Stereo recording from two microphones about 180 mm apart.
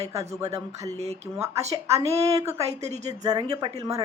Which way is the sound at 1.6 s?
35° right (ahead or behind).